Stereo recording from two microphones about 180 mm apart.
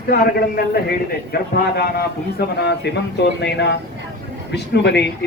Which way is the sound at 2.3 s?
70° left (ahead or behind).